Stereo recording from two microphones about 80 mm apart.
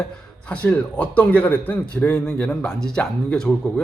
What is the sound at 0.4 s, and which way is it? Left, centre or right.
Speech, centre.